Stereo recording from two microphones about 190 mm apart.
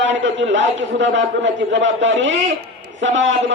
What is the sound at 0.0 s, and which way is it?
A man's voice, 75° right (ahead or behind).